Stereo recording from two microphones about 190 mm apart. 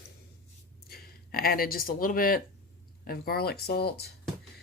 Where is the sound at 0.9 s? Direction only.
55° left (ahead or behind).